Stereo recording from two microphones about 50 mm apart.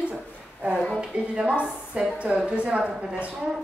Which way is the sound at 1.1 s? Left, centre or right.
Right.